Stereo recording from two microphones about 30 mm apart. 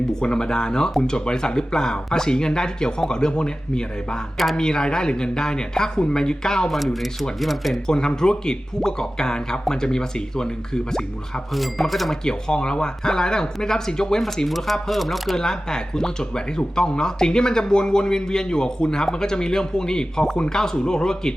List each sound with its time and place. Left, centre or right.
0.1 s speech: left
6.7 s speech: centre
7.9 s speech: left
11.5 s speech: centre
12.2 s speech: left
14.4 s speech: centre
15.4 s speech: left